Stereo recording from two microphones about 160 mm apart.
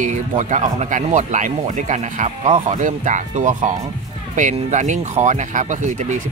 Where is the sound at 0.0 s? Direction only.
50° right (ahead or behind).